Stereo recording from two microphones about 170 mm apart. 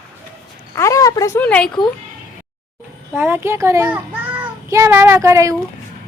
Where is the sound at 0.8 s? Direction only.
20° left (ahead or behind).